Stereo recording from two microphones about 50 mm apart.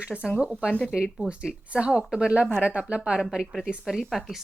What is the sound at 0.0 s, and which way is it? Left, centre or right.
A woman's voice, right.